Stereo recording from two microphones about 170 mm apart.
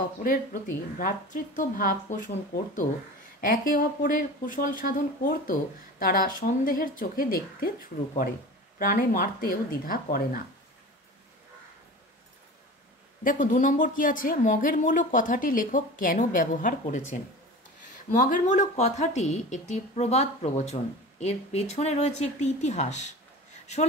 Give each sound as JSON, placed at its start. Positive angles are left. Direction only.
{"t": 0.2, "sound": "a woman's voice", "side_deg": 55}
{"t": 8.7, "sound": "speech", "side_deg": 55}
{"t": 13.2, "sound": "a woman's voice", "side_deg": 50}
{"t": 18.1, "sound": "speech", "side_deg": 45}